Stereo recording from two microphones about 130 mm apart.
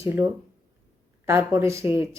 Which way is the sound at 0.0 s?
15° right (ahead or behind).